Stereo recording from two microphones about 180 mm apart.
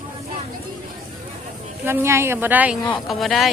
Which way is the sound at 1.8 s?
15° right (ahead or behind).